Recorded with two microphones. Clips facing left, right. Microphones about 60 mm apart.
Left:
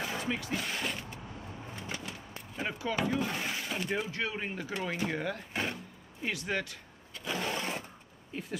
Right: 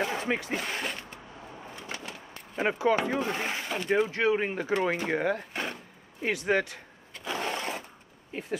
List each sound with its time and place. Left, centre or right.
0.0 s speech: right
1.9 s bird: right
2.5 s speech: right
7.2 s a sound: right
8.3 s speech: right